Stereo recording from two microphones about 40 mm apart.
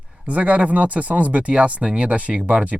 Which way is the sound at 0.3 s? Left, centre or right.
Right.